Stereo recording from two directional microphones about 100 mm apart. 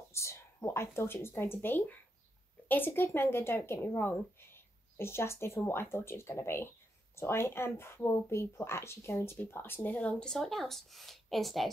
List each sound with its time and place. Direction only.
0.1 s speech: 30° left (ahead or behind); by 11.7 s centre (ahead or behind)